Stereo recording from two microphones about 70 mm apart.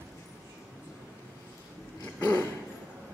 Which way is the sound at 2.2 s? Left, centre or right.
Left.